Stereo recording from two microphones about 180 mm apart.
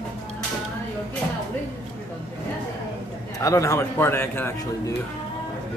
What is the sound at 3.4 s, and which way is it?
Speech, 15° left (ahead or behind).